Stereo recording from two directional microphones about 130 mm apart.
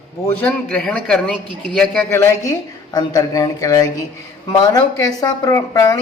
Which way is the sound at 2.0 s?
20° left (ahead or behind).